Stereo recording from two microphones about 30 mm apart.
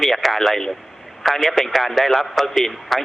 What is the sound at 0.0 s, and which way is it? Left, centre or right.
A man's voice, centre.